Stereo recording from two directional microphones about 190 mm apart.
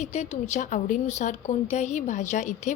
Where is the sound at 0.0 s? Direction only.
35° left (ahead or behind).